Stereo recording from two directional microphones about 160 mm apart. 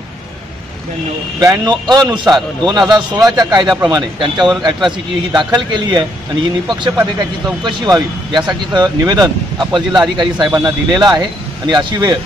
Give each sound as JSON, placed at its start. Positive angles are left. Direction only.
{"t": 1.4, "sound": "speech", "side_deg": -20}